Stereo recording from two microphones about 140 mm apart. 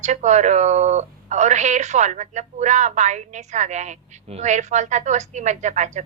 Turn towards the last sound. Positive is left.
turn(degrees=-55)  # may be behind; listen again after turning